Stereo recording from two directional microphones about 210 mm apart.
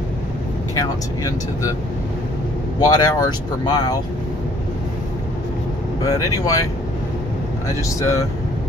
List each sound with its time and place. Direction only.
0.7 s speech: 15° left (ahead or behind)
2.8 s speech: 20° left (ahead or behind)
6.0 s speech: 15° left (ahead or behind)